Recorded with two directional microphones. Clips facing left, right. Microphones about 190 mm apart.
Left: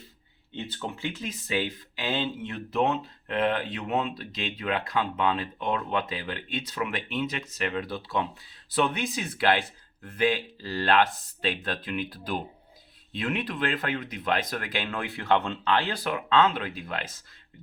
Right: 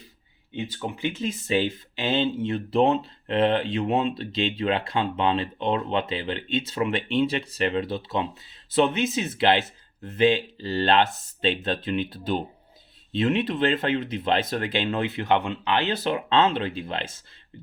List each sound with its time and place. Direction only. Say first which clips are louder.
0.5 s speech: right 4 dB; 10° right (ahead or behind)